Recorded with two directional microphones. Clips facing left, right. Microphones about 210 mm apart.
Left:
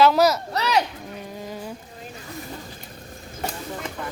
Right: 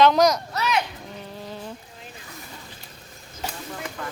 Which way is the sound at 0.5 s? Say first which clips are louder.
Left 3 dB; 35° left (ahead or behind).